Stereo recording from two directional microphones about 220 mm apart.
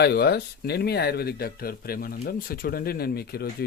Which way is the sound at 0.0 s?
45° left (ahead or behind).